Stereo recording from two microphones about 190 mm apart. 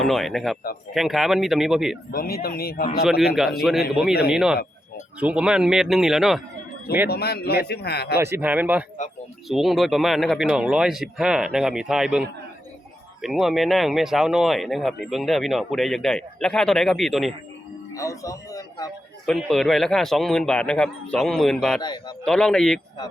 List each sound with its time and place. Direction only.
0.0 s speech: centre (ahead or behind)
2.1 s speech: 50° left (ahead or behind)
3.0 s speech: centre (ahead or behind)
7.1 s a man's voice: 55° left (ahead or behind)
8.2 s speech: 10° right (ahead or behind)
13.2 s speech: centre (ahead or behind)
17.9 s speech: 15° left (ahead or behind)
19.2 s speech: centre (ahead or behind)
21.8 s a man's voice: 20° left (ahead or behind)
22.2 s speech: 5° left (ahead or behind)